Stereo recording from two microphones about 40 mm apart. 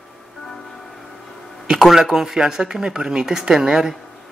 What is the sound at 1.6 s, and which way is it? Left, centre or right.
Speech, centre.